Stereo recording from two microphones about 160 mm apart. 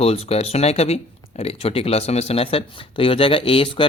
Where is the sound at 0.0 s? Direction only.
40° left (ahead or behind).